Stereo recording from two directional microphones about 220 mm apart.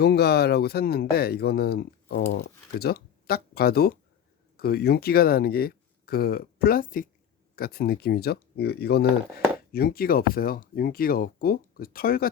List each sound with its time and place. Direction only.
0.0 s speech: 45° left (ahead or behind)